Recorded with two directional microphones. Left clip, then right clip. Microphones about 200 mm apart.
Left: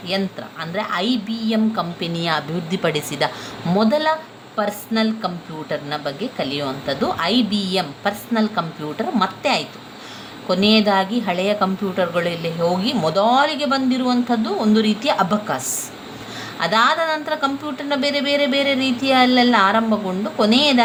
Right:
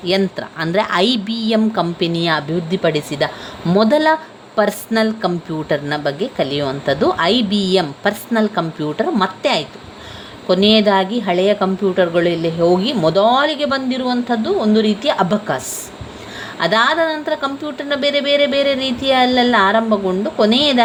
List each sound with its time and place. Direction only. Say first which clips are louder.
0.0 s a woman's voice: right 6 dB; 30° right (ahead or behind)
2.6 s speech: right 4 dB; 10° right (ahead or behind)
3.8 s a woman's voice: right 5 dB; 30° right (ahead or behind)